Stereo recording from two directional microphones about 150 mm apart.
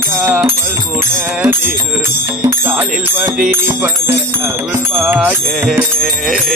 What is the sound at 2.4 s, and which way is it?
Music, 15° right (ahead or behind).